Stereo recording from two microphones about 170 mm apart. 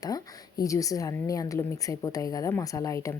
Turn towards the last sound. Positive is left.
turn(degrees=20)  # may be behind; listen again after turning